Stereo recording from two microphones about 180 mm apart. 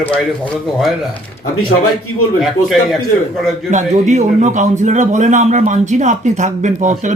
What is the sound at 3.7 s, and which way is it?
A man's voice, 40° right (ahead or behind).